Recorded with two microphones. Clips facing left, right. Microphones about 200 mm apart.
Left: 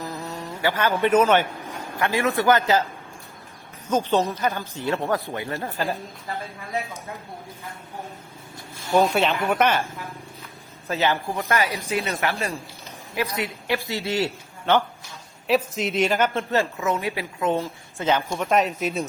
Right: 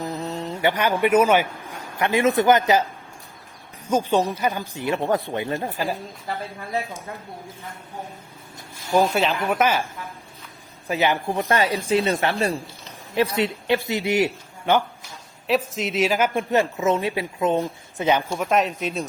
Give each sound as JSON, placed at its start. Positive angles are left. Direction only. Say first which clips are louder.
{"t": 0.0, "sound": "mantra", "louder": "right 4 dB", "side_deg": -15}
{"t": 0.3, "sound": "mantra", "louder": "right 3 dB", "side_deg": -30}
{"t": 0.7, "sound": "speech", "louder": "right 1 dB", "side_deg": -15}
{"t": 3.8, "sound": "speech", "louder": "right 1 dB", "side_deg": -10}
{"t": 8.9, "sound": "speech", "louder": "even", "side_deg": 0}
{"t": 10.8, "sound": "speech", "louder": "right 2 dB", "side_deg": -15}
{"t": 11.4, "sound": "a woman's voice", "louder": "right 3 dB", "side_deg": -30}
{"t": 13.8, "sound": "a man's voice", "louder": "right 4 dB", "side_deg": -15}
{"t": 15.4, "sound": "speech", "louder": "left 1 dB", "side_deg": 0}
{"t": 18.3, "sound": "speech", "louder": "even", "side_deg": 0}